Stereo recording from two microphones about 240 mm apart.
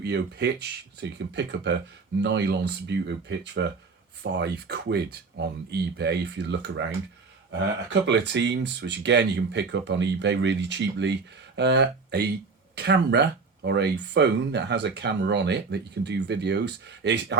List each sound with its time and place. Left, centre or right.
0.0 s speech: right
8.0 s speech: right